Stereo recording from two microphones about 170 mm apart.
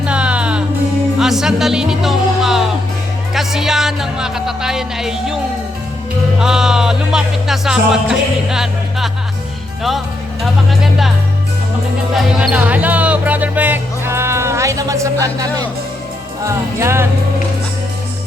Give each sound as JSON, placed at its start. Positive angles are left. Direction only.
{"t": 0.0, "sound": "music", "side_deg": -5}
{"t": 3.3, "sound": "speech", "side_deg": -5}
{"t": 6.4, "sound": "speech", "side_deg": -5}
{"t": 10.4, "sound": "speech", "side_deg": 0}
{"t": 12.1, "sound": "speech", "side_deg": -5}